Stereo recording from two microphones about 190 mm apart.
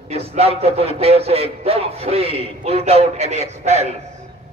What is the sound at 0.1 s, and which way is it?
Speech, 30° right (ahead or behind).